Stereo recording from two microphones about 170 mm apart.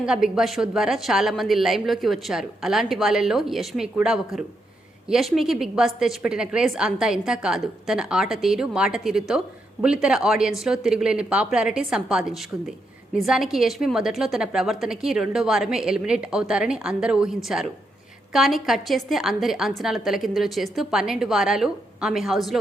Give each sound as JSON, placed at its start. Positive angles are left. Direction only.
{"t": 0.0, "sound": "a woman's voice", "side_deg": -5}